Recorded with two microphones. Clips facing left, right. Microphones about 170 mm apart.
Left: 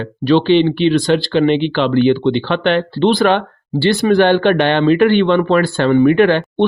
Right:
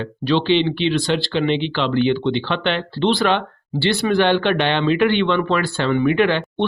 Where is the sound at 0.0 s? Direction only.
45° left (ahead or behind).